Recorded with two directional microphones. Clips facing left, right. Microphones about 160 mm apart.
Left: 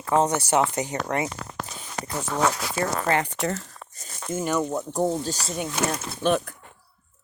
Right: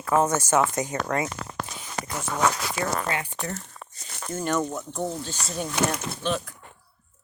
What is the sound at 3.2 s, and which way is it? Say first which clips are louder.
Speech: left 6 dB; 75° left (ahead or behind).